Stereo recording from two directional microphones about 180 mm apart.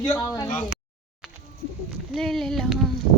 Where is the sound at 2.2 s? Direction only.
Centre (ahead or behind).